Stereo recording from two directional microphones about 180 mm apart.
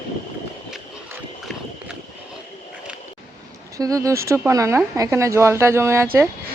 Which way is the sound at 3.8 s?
20° right (ahead or behind).